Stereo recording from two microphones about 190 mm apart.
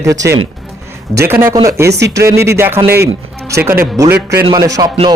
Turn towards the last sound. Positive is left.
turn(degrees=-20)  # may be behind; listen again after turning